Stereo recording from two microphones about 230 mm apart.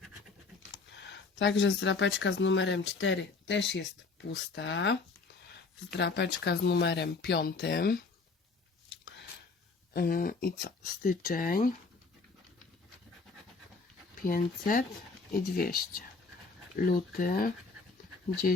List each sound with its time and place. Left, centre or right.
0.9 s speech: left
9.9 s speech: left
14.3 s speech: left